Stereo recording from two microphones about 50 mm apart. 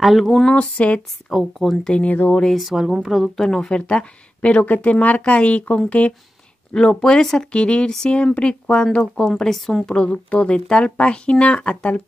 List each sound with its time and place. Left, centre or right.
0.0 s speech: centre
0.5 s speech: left
1.3 s speech: centre
2.0 s speech: left
2.5 s speech: centre
3.3 s speech: centre
9.1 s speech: centre
9.8 s speech: left